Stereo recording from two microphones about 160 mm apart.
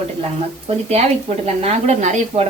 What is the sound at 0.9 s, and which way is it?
Speech, 40° right (ahead or behind).